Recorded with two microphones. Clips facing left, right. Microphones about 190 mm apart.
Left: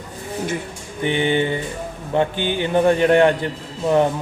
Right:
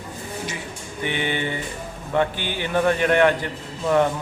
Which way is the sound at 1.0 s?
20° left (ahead or behind).